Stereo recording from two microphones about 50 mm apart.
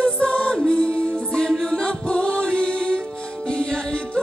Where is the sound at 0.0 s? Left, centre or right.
Centre.